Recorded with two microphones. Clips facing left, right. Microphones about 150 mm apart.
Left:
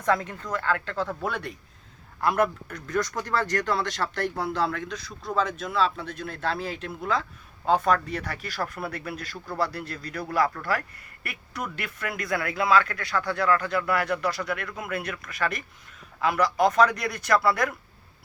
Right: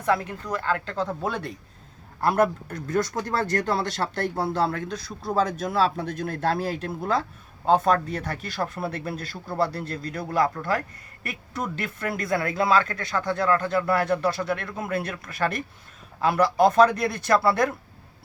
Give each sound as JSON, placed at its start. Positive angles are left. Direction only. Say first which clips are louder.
{"t": 0.0, "sound": "speech", "louder": "right 1 dB", "side_deg": -10}
{"t": 2.2, "sound": "speech", "louder": "right 2 dB", "side_deg": -35}
{"t": 7.6, "sound": "speech", "louder": "right 2 dB", "side_deg": -25}